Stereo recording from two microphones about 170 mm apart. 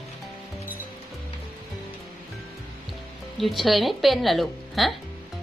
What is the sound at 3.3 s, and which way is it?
A woman's voice, centre (ahead or behind).